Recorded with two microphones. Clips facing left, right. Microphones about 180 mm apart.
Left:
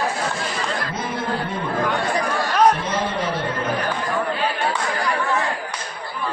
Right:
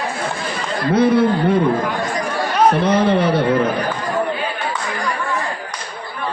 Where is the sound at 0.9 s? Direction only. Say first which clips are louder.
Right 16 dB; 65° right (ahead or behind).